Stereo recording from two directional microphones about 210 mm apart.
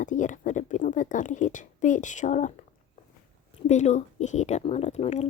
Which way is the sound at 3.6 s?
35° left (ahead or behind).